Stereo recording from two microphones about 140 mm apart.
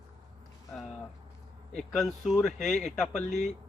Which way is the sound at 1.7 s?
Centre (ahead or behind).